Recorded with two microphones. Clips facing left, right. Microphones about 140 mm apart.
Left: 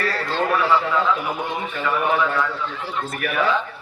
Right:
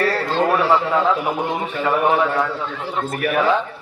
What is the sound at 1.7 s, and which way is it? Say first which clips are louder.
Speech: right 4 dB; 30° right (ahead or behind).